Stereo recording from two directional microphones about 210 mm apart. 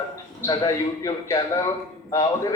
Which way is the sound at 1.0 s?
15° left (ahead or behind).